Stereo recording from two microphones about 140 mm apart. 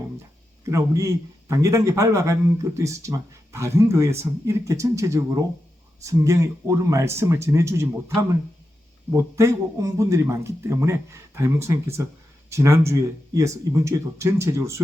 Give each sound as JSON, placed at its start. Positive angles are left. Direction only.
{"t": 0.6, "sound": "a man's voice", "side_deg": -20}
{"t": 9.1, "sound": "a man's voice", "side_deg": -20}